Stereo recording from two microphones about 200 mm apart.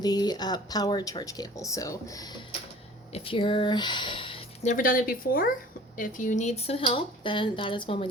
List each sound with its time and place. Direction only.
0.0 s speech: 20° left (ahead or behind)